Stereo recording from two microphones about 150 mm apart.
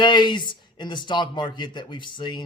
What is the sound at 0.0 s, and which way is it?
A man's voice, 30° left (ahead or behind).